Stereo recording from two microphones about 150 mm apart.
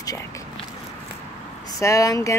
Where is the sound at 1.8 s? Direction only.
20° left (ahead or behind).